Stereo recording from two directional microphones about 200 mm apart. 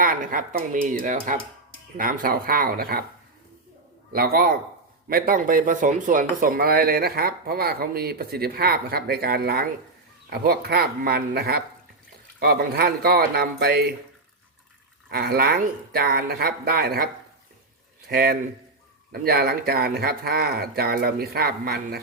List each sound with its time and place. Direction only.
0.0 s speech: 45° right (ahead or behind)
4.1 s speech: 50° right (ahead or behind)
15.1 s speech: 50° right (ahead or behind)
18.1 s speech: 50° right (ahead or behind)